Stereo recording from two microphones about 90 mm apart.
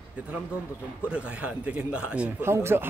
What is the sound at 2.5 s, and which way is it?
Speech, 30° right (ahead or behind).